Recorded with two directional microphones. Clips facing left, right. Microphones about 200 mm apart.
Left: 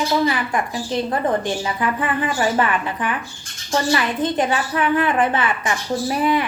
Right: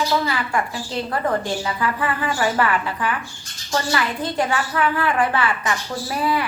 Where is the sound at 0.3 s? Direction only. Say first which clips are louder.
Left 2 dB; 20° left (ahead or behind).